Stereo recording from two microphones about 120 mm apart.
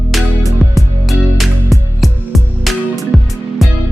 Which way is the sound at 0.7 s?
Centre (ahead or behind).